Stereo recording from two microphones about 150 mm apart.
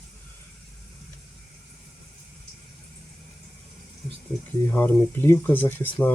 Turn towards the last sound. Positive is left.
turn(degrees=15)  # may be behind; listen again after turning